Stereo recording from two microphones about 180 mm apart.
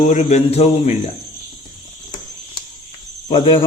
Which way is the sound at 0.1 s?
40° left (ahead or behind).